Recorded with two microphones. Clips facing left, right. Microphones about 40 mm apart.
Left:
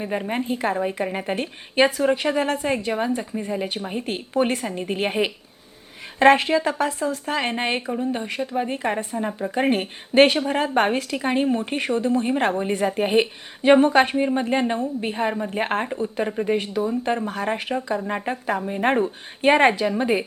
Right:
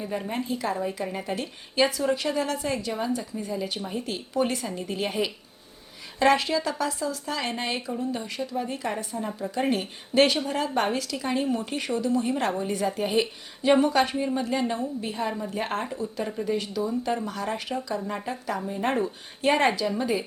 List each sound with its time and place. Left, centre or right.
0.0 s a woman's voice: left